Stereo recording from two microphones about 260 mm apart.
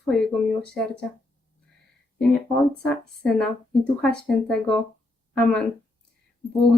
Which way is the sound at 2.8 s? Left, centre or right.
Centre.